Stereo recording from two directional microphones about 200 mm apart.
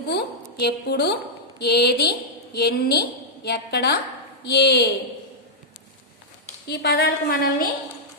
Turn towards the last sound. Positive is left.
turn(degrees=50)  # may be behind; listen again after turning